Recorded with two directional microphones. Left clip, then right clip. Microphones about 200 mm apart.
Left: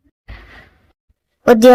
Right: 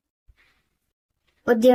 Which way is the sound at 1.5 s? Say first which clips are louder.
Left 9 dB; 40° left (ahead or behind).